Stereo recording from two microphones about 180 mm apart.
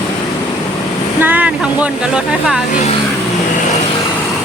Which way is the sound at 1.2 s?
10° right (ahead or behind).